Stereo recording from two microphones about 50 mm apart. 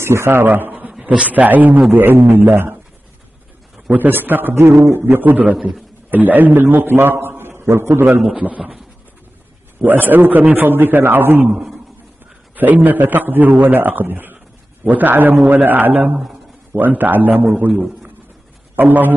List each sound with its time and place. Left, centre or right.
0.0 s a man's voice: right
0.5 s a sound: right
1.0 s a man's voice: right
2.0 s speech: right
3.9 s a man's voice: right
4.6 s a man's voice: right
5.2 s a man's voice: right
8.4 s a man's voice: right
9.8 s a man's voice: right
11.5 s a man's voice: centre
12.5 s a man's voice: right
18.8 s a man's voice: right